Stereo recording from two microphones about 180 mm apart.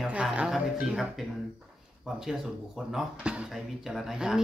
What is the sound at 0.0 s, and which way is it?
Speech, 5° right (ahead or behind).